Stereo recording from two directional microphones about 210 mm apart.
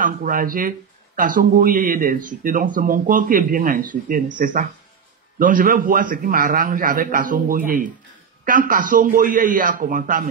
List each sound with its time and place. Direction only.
0.0 s speech: 40° right (ahead or behind)